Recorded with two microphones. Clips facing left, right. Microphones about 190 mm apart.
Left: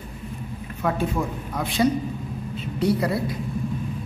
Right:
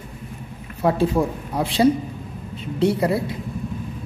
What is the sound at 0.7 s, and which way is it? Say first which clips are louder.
A woman's voice: right 6 dB; 35° right (ahead or behind).